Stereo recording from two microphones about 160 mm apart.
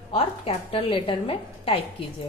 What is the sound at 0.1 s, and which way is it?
A woman's voice, 35° left (ahead or behind).